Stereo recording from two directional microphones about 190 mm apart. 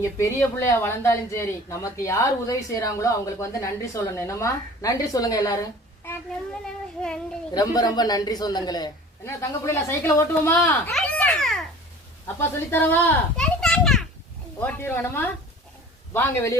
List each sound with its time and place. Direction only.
0.0 s speech: 15° left (ahead or behind)
7.5 s a man's voice: 20° left (ahead or behind)
10.6 s a sound: 5° left (ahead or behind)
12.4 s speech: 10° left (ahead or behind)
13.4 s children playing: 5° left (ahead or behind)
14.6 s speech: 10° left (ahead or behind)